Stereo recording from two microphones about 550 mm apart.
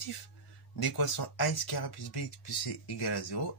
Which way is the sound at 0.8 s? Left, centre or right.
Left.